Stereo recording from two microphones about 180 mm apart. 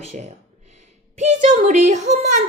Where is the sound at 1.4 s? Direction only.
40° right (ahead or behind).